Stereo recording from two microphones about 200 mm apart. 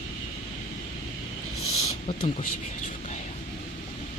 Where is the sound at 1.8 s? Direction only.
25° left (ahead or behind).